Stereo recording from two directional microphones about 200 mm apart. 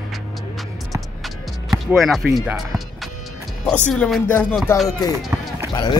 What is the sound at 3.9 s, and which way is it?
Speech, 5° left (ahead or behind).